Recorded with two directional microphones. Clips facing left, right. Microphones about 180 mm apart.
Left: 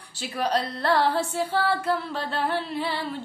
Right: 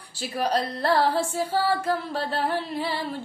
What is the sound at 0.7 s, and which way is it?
Speech, 40° right (ahead or behind).